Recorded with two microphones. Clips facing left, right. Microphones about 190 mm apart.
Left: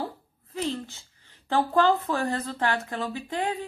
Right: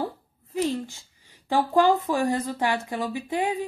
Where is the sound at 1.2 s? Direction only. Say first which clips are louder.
Right 1 dB; 10° right (ahead or behind).